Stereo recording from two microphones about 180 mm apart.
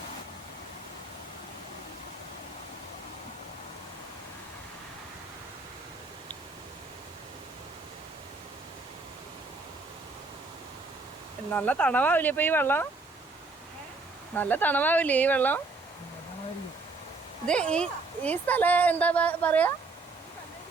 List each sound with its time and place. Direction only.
11.5 s a woman's voice: 5° left (ahead or behind)
14.3 s a woman's voice: 10° left (ahead or behind)
17.4 s a woman's voice: 5° left (ahead or behind)